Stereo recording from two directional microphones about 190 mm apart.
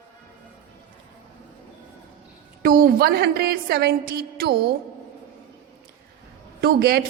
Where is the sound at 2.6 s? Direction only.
50° right (ahead or behind).